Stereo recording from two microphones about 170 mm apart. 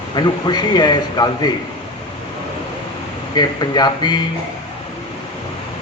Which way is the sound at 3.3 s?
25° left (ahead or behind).